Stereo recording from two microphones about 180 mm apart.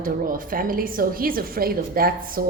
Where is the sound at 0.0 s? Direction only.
50° right (ahead or behind).